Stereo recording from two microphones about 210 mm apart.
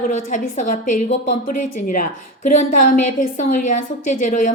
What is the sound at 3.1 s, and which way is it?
A woman's voice, 40° left (ahead or behind).